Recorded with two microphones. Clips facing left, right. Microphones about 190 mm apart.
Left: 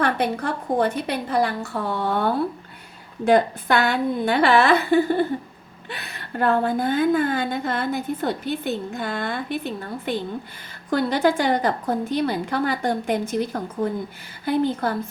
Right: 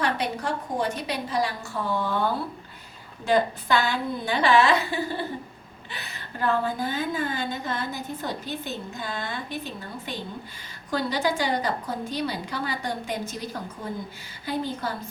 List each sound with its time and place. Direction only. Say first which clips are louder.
0.0 s a woman's voice: left 5 dB; 55° left (ahead or behind)